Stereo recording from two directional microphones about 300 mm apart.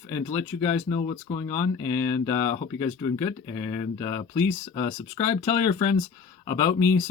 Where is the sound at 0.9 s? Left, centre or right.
Centre.